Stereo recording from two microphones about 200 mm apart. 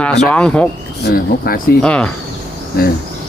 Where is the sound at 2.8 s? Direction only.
50° left (ahead or behind).